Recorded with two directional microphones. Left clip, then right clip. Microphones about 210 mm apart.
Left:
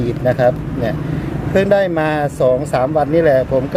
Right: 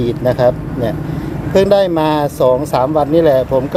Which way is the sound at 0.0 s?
15° right (ahead or behind).